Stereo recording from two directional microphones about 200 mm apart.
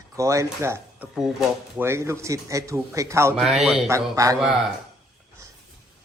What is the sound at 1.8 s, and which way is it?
Speech, 15° right (ahead or behind).